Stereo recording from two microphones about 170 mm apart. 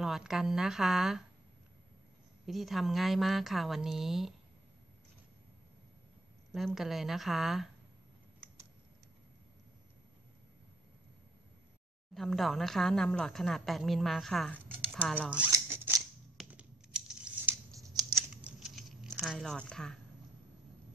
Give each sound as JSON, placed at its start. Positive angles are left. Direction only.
{"t": 0.0, "sound": "speech", "side_deg": 0}
{"t": 2.4, "sound": "speech", "side_deg": 0}
{"t": 6.5, "sound": "speech", "side_deg": 0}
{"t": 12.1, "sound": "speech", "side_deg": 0}
{"t": 14.9, "sound": "zipper", "side_deg": 0}
{"t": 15.1, "sound": "speech", "side_deg": -10}
{"t": 15.5, "sound": "scissors", "side_deg": -15}
{"t": 16.3, "sound": "a sound", "side_deg": -5}
{"t": 17.7, "sound": "scissors", "side_deg": -20}
{"t": 18.4, "sound": "a sound", "side_deg": 0}
{"t": 19.2, "sound": "speech", "side_deg": 0}